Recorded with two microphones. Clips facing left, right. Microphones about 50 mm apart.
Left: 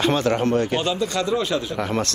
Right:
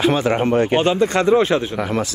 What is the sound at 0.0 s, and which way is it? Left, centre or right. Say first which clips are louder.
Speech: right 3 dB; centre.